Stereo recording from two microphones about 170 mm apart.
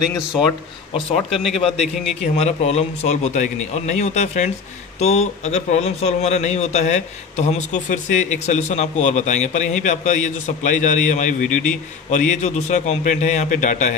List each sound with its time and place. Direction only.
0.9 s a man's voice: 35° left (ahead or behind)